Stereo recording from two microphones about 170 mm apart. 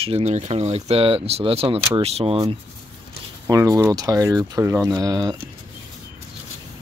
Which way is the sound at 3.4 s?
15° right (ahead or behind).